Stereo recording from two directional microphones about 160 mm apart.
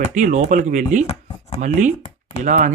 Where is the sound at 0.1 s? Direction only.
50° right (ahead or behind).